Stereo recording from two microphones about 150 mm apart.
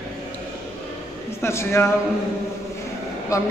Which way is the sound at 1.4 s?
15° left (ahead or behind).